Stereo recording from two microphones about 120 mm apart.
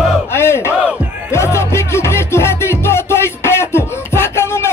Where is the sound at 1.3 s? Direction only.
20° left (ahead or behind).